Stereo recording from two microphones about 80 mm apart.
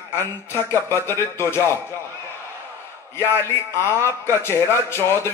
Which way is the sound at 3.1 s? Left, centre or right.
Left.